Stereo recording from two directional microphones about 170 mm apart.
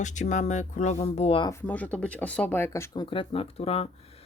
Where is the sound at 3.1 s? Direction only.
30° left (ahead or behind).